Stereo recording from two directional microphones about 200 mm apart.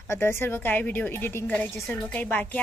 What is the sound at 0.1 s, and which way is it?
A woman's voice, 10° left (ahead or behind).